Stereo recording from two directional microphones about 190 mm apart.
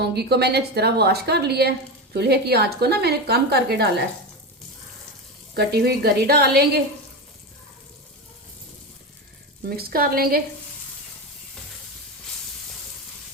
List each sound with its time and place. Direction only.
0.0 s a woman's voice: 60° right (ahead or behind)
5.5 s a woman's voice: 60° right (ahead or behind)
9.6 s speech: 50° right (ahead or behind)